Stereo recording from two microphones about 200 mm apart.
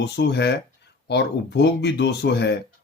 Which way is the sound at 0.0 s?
60° left (ahead or behind).